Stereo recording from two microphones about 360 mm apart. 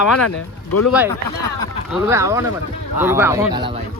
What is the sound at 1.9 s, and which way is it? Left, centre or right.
Speech, centre.